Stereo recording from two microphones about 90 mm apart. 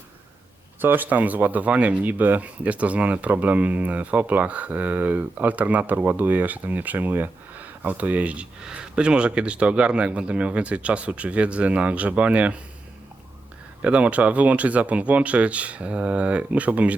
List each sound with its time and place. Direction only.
0.8 s speech: 20° right (ahead or behind)
13.8 s speech: 15° right (ahead or behind)